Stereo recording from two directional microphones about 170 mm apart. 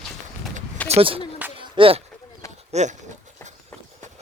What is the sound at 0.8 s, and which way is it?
Speech, 35° right (ahead or behind).